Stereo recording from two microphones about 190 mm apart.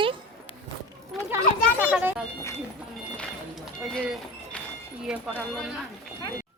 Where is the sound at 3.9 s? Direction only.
5° left (ahead or behind).